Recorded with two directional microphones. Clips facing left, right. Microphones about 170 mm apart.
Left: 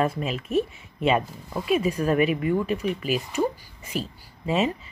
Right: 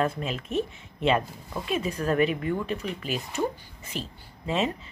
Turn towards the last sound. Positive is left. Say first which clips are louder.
# left 3 dB
turn(degrees=5)  # may be behind; listen again after turning